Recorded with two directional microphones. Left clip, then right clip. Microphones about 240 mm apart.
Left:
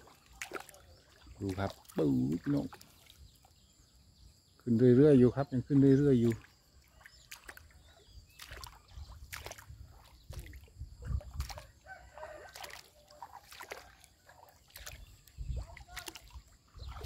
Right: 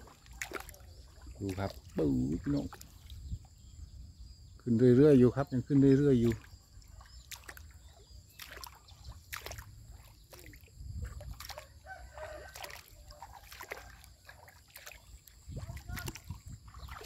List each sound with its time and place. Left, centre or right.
0.4 s splash: centre
1.6 s speech: centre
2.7 s a sound: centre
4.6 s speech: centre
7.2 s boat: centre
8.4 s rowboat: centre
9.3 s boat: centre
10.3 s a sound: centre
11.9 s a sound: right
12.5 s a sound: centre
13.2 s boat: centre
15.9 s splash: centre